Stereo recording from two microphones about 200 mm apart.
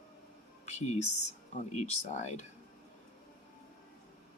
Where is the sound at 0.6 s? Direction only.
35° left (ahead or behind).